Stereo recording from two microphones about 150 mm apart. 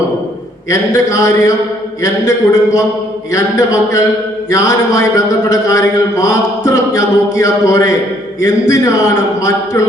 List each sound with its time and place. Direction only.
0.7 s a man's voice: 20° left (ahead or behind)